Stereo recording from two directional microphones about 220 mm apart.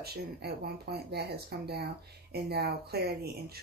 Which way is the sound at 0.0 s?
45° right (ahead or behind).